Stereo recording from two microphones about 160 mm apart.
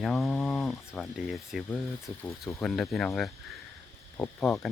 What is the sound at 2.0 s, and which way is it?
Speech, 15° left (ahead or behind).